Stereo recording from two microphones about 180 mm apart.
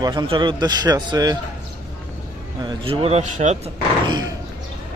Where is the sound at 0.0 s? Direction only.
25° right (ahead or behind).